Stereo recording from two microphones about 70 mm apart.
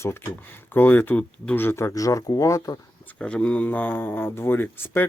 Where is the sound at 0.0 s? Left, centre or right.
Left.